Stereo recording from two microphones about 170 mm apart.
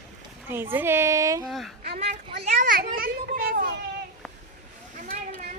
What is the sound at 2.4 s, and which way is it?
Children playing, 45° right (ahead or behind).